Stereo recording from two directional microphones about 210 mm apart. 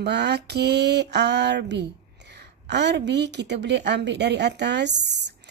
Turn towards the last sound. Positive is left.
turn(degrees=-55)  # may be behind; listen again after turning